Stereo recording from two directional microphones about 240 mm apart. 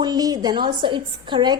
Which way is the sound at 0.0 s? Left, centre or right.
Centre.